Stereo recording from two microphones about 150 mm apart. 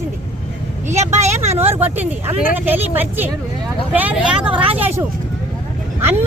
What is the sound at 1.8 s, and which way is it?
Speech, 10° right (ahead or behind).